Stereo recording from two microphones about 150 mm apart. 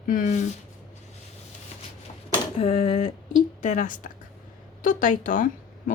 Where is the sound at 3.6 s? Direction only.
55° left (ahead or behind).